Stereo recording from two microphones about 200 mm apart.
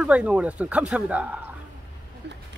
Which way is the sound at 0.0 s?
5° right (ahead or behind).